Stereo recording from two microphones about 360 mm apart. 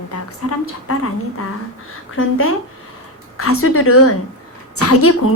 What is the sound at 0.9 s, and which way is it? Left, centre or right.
Speech, left.